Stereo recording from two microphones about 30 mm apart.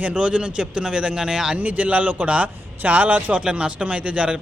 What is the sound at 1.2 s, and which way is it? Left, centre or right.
Speech, centre.